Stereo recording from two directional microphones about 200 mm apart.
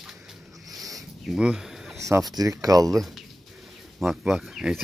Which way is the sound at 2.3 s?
15° right (ahead or behind).